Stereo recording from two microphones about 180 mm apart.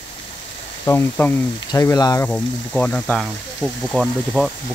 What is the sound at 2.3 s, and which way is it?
Speech, 5° left (ahead or behind).